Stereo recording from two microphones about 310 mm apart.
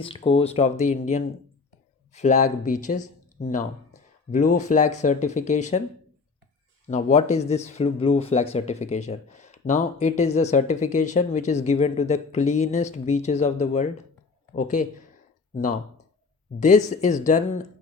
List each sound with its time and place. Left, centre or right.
0.0 s speech: centre
6.8 s speech: left
16.6 s speech: left